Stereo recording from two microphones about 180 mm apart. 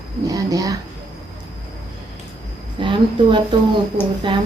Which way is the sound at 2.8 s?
25° right (ahead or behind).